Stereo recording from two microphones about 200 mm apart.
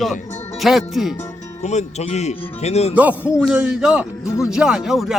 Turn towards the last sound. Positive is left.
turn(degrees=0)  # may be behind; listen again after turning